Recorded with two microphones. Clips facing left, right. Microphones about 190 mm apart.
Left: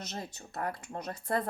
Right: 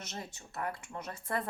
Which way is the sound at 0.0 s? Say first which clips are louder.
Left 3 dB; 40° left (ahead or behind).